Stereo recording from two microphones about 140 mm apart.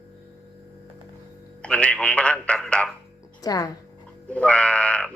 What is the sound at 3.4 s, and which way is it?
Speech, 25° left (ahead or behind).